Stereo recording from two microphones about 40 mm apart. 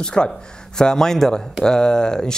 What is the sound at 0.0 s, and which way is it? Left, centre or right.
Speech, left.